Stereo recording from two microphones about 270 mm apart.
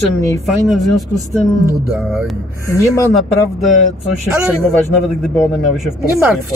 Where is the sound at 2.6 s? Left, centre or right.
Centre.